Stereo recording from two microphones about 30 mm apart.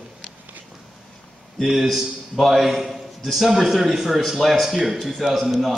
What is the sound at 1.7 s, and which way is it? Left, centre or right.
A man's voice, centre.